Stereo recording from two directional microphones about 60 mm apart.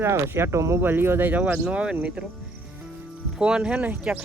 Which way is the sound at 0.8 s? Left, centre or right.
Right.